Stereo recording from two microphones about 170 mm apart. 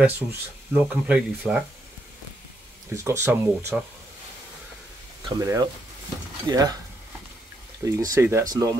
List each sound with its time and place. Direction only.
0.0 s speech: 10° right (ahead or behind)
3.0 s speech: 15° right (ahead or behind)
5.4 s speech: 20° right (ahead or behind)
7.8 s speech: 20° right (ahead or behind)